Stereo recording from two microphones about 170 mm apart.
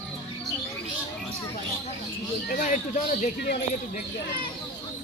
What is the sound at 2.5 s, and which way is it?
Speech, 50° left (ahead or behind).